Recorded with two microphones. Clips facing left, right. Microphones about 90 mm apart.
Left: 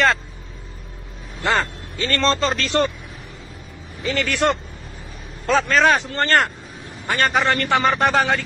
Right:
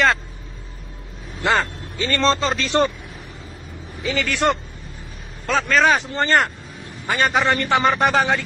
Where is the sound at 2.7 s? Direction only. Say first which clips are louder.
Right 2 dB; 30° right (ahead or behind).